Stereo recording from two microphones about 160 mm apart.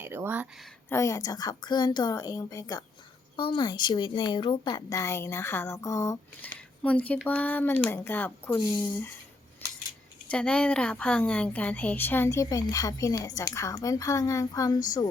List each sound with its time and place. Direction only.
0.0 s a sound: 15° right (ahead or behind)
0.9 s a woman's voice: 20° left (ahead or behind)
10.2 s a woman's voice: 5° left (ahead or behind); by 15.1 s 25° left (ahead or behind)